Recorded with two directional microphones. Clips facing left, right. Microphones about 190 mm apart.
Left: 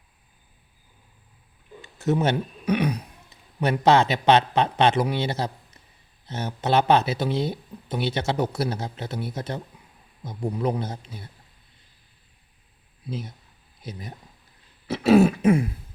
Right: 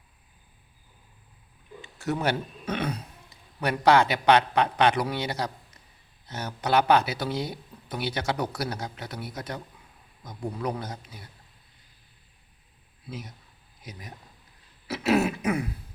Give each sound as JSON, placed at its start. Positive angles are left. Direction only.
{"t": 2.0, "sound": "speech", "side_deg": 20}
{"t": 3.6, "sound": "speech", "side_deg": 25}
{"t": 13.1, "sound": "speech", "side_deg": 30}
{"t": 14.8, "sound": "speech", "side_deg": 30}